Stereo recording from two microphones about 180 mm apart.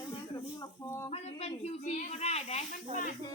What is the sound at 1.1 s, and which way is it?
Speech, 35° left (ahead or behind).